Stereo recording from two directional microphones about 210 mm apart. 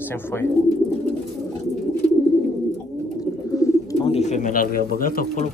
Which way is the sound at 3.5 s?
25° left (ahead or behind).